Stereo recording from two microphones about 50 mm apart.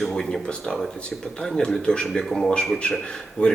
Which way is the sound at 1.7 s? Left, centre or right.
Centre.